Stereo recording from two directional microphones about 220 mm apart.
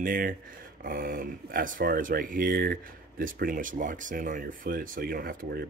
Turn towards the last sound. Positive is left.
turn(degrees=-45)  # may be behind; listen again after turning